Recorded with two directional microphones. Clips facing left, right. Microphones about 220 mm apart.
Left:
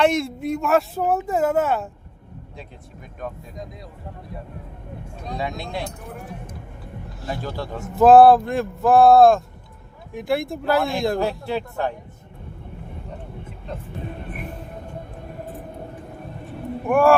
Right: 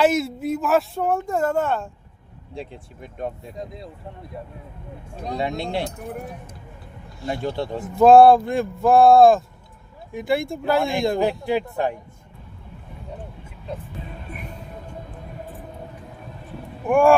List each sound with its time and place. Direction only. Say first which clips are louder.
0.0 s speech: even; 5° right (ahead or behind)
2.6 s speech: right 9 dB; 25° right (ahead or behind)
5.4 s speech: right 3 dB; 25° right (ahead or behind)
7.3 s speech: right 4 dB; 25° right (ahead or behind)
7.9 s speech: even; centre (ahead or behind)
11.2 s speech: right 3 dB; 15° right (ahead or behind)
16.8 s speech: right 1 dB; centre (ahead or behind)